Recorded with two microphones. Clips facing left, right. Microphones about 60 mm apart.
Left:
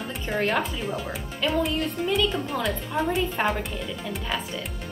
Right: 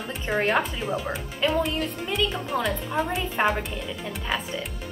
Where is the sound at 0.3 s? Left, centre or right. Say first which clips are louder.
Right 2 dB; centre.